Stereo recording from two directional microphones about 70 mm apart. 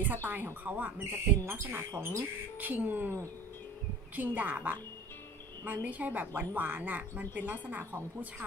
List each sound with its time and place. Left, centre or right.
0.0 s speech: right
2.6 s speech: right
5.9 s speech: right